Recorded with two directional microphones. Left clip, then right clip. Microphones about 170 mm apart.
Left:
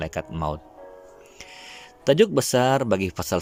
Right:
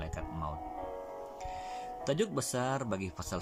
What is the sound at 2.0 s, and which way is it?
Speech, 55° left (ahead or behind).